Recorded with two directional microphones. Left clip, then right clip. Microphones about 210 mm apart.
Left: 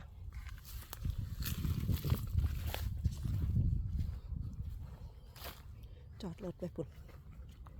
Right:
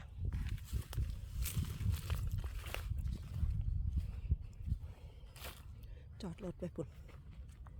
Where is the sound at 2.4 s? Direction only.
20° left (ahead or behind).